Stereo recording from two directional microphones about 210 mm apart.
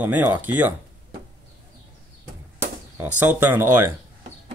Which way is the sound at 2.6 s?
10° right (ahead or behind).